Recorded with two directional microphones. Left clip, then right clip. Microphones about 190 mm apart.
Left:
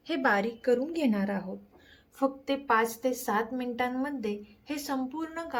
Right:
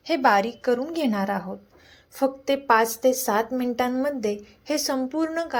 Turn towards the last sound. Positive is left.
turn(degrees=-20)  # may be behind; listen again after turning